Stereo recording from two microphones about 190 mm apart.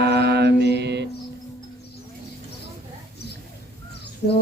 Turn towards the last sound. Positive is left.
turn(degrees=60)  # may be behind; listen again after turning